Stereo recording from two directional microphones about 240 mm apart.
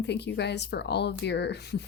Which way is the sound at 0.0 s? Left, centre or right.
Left.